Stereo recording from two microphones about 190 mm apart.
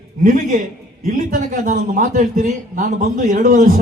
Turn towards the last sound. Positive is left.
turn(degrees=-45)  # may be behind; listen again after turning